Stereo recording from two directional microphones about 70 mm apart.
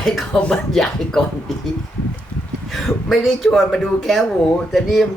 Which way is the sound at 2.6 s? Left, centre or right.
Centre.